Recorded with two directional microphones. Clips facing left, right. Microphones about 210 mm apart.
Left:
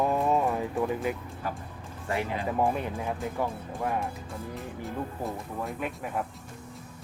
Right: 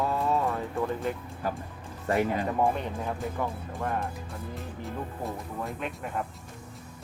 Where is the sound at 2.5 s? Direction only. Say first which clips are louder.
Even; 5° left (ahead or behind).